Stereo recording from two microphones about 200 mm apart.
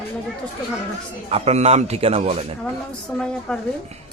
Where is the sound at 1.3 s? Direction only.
30° right (ahead or behind).